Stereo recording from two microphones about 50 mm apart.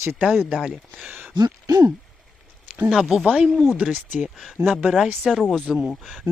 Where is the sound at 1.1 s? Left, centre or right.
Right.